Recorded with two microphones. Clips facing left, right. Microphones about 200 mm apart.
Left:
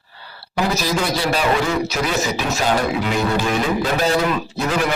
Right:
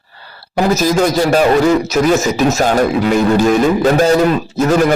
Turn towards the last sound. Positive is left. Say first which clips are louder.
# right 9 dB
turn(degrees=-45)  # may be behind; listen again after turning